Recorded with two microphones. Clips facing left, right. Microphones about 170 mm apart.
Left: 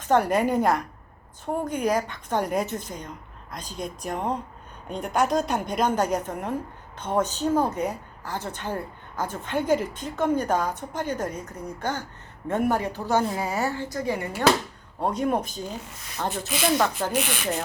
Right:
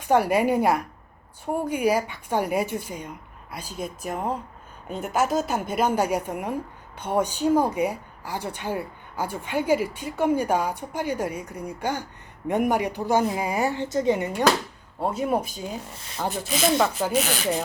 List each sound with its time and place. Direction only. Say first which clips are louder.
0.0 s a woman's voice: right 1 dB; 10° right (ahead or behind)
15.0 s speech: even; 5° right (ahead or behind)
17.2 s speech: right 4 dB; 40° right (ahead or behind)